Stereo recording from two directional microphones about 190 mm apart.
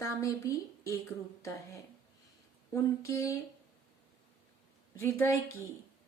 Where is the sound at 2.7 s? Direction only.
15° left (ahead or behind).